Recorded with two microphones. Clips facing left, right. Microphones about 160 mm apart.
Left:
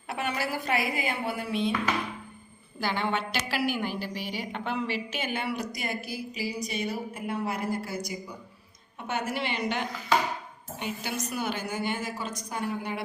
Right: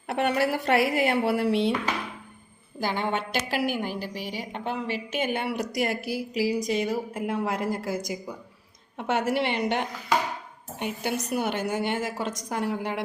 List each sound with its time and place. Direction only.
0.1 s speech: 65° right (ahead or behind)
2.8 s a woman's voice: 45° right (ahead or behind); by 13.1 s 85° right